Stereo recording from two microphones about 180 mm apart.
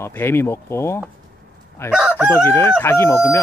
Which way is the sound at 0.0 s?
10° left (ahead or behind).